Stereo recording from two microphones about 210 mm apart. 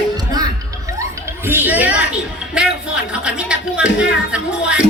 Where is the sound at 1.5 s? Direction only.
10° right (ahead or behind).